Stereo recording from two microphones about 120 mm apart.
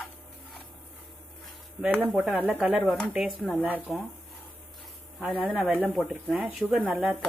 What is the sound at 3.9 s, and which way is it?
Speech, centre (ahead or behind).